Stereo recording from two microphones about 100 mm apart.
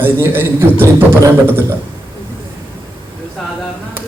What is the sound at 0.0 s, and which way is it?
Speech, 20° right (ahead or behind).